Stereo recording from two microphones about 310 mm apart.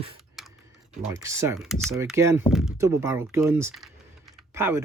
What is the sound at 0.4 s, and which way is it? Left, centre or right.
Typing, centre.